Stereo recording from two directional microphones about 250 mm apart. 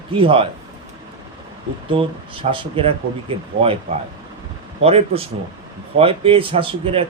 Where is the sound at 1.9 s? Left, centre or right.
Right.